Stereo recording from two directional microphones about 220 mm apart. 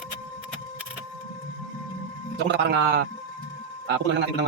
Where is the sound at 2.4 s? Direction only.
50° right (ahead or behind).